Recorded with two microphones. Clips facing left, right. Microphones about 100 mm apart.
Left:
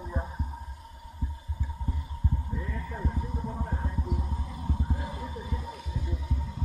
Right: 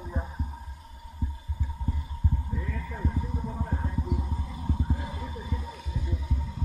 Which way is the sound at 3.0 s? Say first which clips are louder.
Right 3 dB; 5° left (ahead or behind).